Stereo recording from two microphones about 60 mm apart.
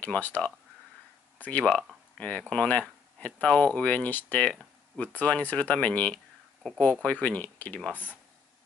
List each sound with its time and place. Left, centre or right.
0.0 s speech: left